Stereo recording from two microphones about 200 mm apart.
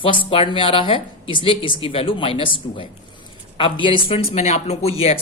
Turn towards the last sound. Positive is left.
turn(degrees=30)  # may be behind; listen again after turning